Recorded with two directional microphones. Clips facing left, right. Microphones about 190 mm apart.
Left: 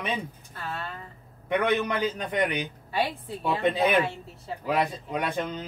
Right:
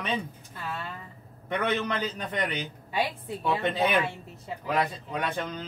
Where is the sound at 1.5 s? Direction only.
15° left (ahead or behind).